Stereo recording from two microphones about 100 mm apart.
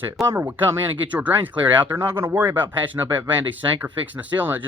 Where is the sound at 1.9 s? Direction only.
25° right (ahead or behind).